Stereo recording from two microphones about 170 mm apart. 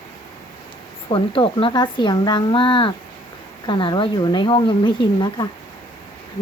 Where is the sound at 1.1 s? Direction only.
30° left (ahead or behind).